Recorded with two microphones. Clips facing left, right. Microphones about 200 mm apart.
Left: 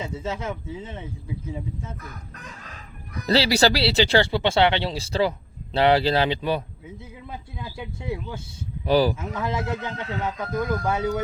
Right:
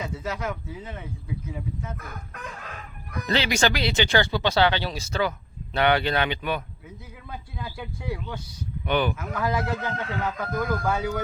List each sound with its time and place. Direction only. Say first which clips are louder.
0.0 s speech: left 1 dB; 25° left (ahead or behind)
3.2 s speech: left 4 dB; 35° left (ahead or behind)
7.3 s speech: right 1 dB; 20° left (ahead or behind)
8.9 s speech: left 5 dB; 35° left (ahead or behind)